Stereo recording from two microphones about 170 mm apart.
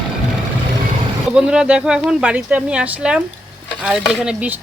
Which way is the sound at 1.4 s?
5° right (ahead or behind).